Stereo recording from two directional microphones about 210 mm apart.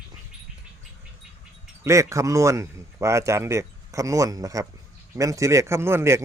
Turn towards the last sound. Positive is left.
turn(degrees=-10)  # may be behind; listen again after turning